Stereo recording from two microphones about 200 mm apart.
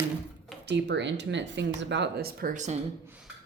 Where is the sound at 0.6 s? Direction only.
60° right (ahead or behind); by 2.7 s 40° right (ahead or behind).